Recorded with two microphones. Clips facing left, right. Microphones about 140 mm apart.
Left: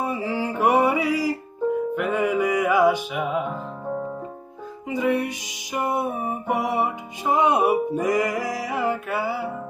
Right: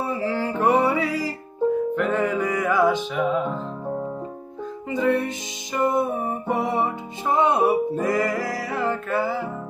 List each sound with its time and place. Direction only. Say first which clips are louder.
0.0 s mantra: right 1 dB; 15° left (ahead or behind)
2.0 s music: even; 10° left (ahead or behind)
4.9 s music: right 1 dB; 10° left (ahead or behind)